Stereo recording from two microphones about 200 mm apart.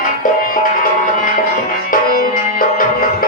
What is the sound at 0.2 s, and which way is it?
Music, 45° left (ahead or behind).